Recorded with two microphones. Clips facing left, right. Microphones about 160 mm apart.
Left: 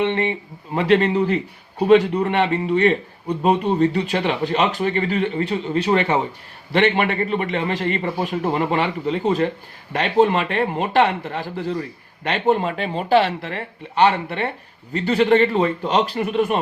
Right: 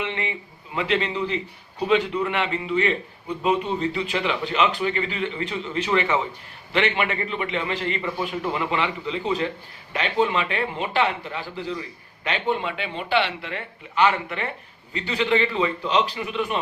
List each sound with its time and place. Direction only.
0.3 s a man's voice: 45° left (ahead or behind)
14.9 s a man's voice: 45° left (ahead or behind)